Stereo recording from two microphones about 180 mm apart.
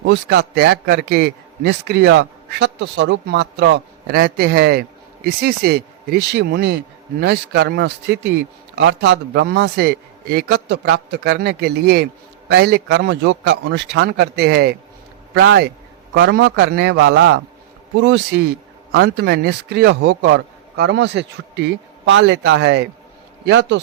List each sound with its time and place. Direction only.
0.0 s a man's voice: 75° right (ahead or behind)
16.1 s a man's voice: 80° right
17.9 s a man's voice: 80° right